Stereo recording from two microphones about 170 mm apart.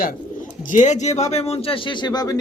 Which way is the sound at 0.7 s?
45° left (ahead or behind).